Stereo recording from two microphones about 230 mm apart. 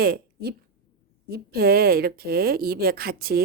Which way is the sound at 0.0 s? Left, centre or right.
Right.